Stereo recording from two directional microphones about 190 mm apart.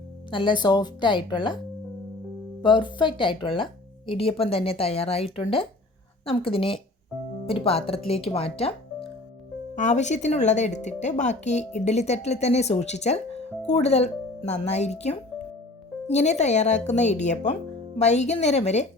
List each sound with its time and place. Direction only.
0.3 s speech: 25° left (ahead or behind)
2.6 s speech: 25° left (ahead or behind)